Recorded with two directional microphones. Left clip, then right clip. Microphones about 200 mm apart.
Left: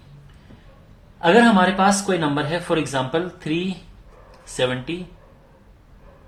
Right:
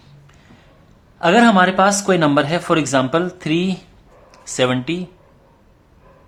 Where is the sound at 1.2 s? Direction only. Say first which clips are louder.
Right 2 dB; 40° right (ahead or behind).